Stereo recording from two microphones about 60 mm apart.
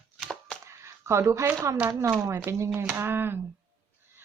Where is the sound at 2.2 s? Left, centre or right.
Right.